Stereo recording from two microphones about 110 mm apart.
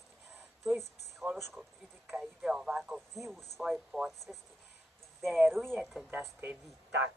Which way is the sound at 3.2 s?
5° left (ahead or behind).